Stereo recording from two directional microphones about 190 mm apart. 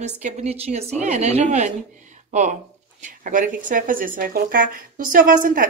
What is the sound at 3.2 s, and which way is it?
Speech, 45° right (ahead or behind).